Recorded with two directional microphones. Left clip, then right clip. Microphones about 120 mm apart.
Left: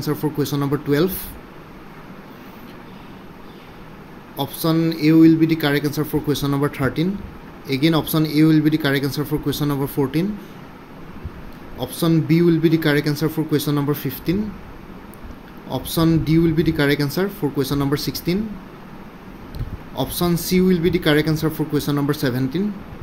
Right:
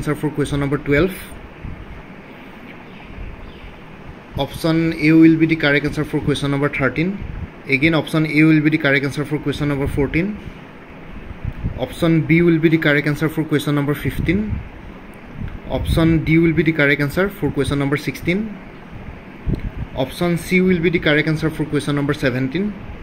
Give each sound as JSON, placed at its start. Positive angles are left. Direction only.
{"t": 0.0, "sound": "speech", "side_deg": -5}
{"t": 0.9, "sound": "speech", "side_deg": 20}
{"t": 4.4, "sound": "speech", "side_deg": 15}
{"t": 11.8, "sound": "speech", "side_deg": 5}
{"t": 16.0, "sound": "speech", "side_deg": 15}
{"t": 20.0, "sound": "speech", "side_deg": 25}